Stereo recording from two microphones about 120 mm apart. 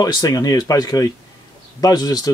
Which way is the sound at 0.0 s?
30° left (ahead or behind).